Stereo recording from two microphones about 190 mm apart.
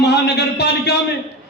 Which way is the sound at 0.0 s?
60° left (ahead or behind).